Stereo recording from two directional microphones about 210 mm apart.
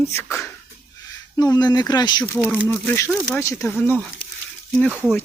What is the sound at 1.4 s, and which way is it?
Speech, 20° left (ahead or behind).